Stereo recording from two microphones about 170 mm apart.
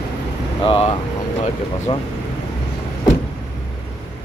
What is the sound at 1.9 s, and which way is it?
Speech, 30° left (ahead or behind).